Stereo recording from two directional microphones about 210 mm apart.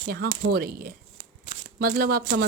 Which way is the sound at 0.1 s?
50° right (ahead or behind).